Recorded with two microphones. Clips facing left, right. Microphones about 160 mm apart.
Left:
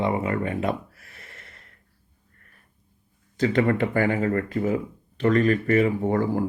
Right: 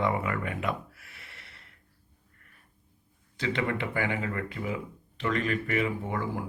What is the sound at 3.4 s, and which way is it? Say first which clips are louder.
Speech: left 9 dB; 45° left (ahead or behind).